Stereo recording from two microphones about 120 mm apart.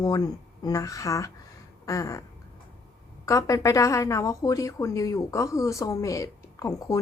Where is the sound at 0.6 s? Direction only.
30° left (ahead or behind).